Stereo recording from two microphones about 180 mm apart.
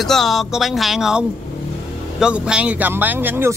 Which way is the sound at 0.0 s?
Centre (ahead or behind).